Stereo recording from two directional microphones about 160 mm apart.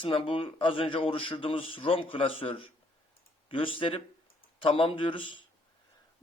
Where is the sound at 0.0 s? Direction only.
35° left (ahead or behind).